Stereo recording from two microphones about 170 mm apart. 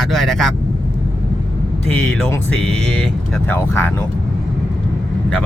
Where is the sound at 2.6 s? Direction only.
5° left (ahead or behind).